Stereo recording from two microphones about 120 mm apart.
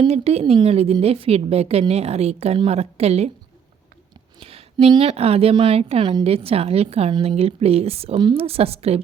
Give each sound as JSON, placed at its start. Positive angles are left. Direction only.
{"t": 0.1, "sound": "a woman's voice", "side_deg": -60}
{"t": 4.4, "sound": "a woman's voice", "side_deg": -55}